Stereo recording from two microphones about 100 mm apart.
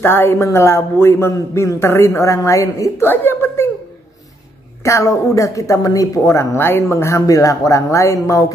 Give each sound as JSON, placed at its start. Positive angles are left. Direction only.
{"t": 0.0, "sound": "a man's voice", "side_deg": 25}
{"t": 4.8, "sound": "speech", "side_deg": 30}